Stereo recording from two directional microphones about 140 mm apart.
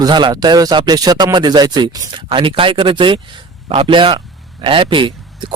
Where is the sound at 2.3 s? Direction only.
40° right (ahead or behind).